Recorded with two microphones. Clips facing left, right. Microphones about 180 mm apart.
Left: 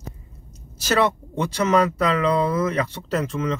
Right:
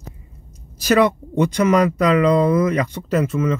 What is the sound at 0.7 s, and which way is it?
Speech, 15° right (ahead or behind).